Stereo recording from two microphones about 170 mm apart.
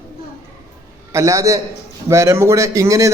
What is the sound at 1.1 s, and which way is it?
A man's voice, 15° right (ahead or behind).